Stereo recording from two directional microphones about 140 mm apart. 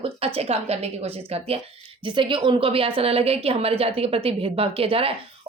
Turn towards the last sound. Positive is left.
turn(degrees=-40)  # may be behind; listen again after turning